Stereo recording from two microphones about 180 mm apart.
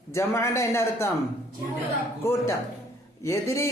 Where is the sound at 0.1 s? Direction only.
15° left (ahead or behind).